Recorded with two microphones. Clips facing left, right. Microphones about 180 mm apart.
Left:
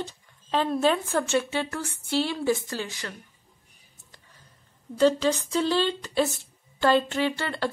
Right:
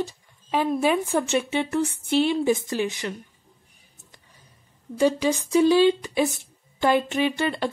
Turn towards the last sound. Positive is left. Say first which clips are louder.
# right 3 dB
turn(degrees=-15)  # may be behind; listen again after turning